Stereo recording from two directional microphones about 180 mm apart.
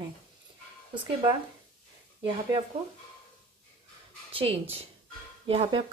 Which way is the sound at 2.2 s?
30° right (ahead or behind).